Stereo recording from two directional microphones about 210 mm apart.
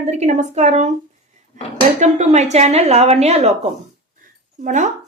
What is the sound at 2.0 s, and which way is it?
Speech, 30° right (ahead or behind).